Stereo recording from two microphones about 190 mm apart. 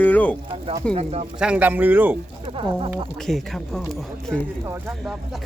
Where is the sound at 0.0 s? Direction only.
10° left (ahead or behind).